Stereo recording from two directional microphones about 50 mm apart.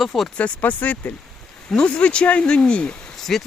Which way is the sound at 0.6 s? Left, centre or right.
Left.